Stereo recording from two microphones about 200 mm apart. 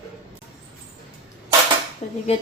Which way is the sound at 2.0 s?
35° left (ahead or behind).